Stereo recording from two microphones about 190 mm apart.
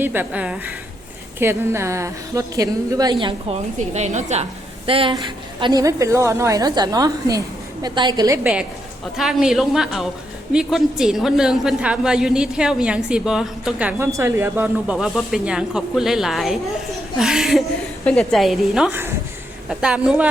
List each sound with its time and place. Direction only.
0.0 s a woman's voice: 10° right (ahead or behind)
3.8 s a woman's voice: 35° right (ahead or behind); by 8.4 s 20° right (ahead or behind)
9.1 s a woman's voice: centre (ahead or behind)